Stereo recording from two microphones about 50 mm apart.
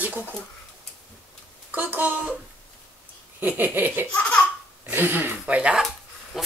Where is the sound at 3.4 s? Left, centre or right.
Right.